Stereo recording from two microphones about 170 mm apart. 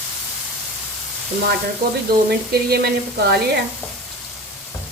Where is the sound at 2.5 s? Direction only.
65° right (ahead or behind).